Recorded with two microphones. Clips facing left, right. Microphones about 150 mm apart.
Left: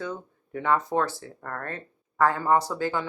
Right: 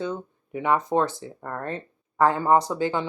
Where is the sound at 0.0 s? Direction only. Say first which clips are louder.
Right 4 dB; 20° right (ahead or behind).